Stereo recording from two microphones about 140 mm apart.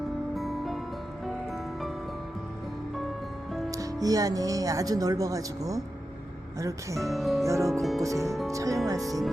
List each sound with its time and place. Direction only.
0.3 s music: centre (ahead or behind)
3.7 s music: 25° right (ahead or behind)
4.0 s speech: 25° right (ahead or behind)
7.1 s music: centre (ahead or behind)
7.4 s speech: 20° right (ahead or behind)
7.7 s music: centre (ahead or behind)
8.0 s speech: 25° right (ahead or behind)